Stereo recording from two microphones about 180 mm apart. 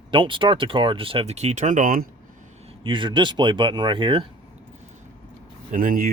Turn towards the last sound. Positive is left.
turn(degrees=-50)  # may be behind; listen again after turning